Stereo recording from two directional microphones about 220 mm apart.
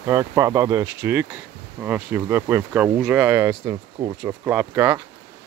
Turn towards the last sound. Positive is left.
turn(degrees=-10)  # may be behind; listen again after turning